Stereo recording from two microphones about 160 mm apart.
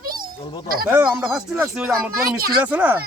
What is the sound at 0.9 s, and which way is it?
Speech, 10° right (ahead or behind).